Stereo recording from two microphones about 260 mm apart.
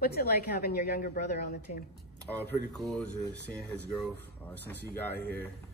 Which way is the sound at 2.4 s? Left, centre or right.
Centre.